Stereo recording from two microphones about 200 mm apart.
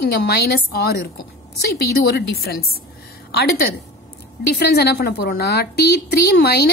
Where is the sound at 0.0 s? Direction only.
55° left (ahead or behind).